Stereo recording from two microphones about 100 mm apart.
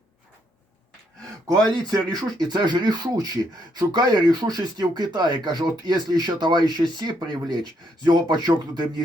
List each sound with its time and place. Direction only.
1.7 s speech: 40° right (ahead or behind)